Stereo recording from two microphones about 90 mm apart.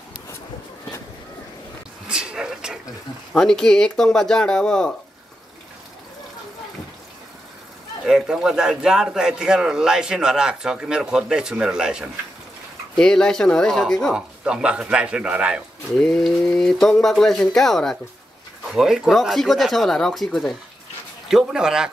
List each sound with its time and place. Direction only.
2.0 s a sound: 10° right (ahead or behind)
3.3 s speech: 5° left (ahead or behind)
8.0 s a man's voice: 5° right (ahead or behind)
12.9 s speech: 5° left (ahead or behind)
14.1 s a man's voice: 10° right (ahead or behind)
16.0 s speech: 5° left (ahead or behind)
21.3 s a man's voice: 5° right (ahead or behind)